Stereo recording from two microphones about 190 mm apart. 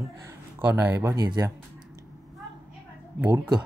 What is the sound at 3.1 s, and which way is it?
Speech, 10° right (ahead or behind).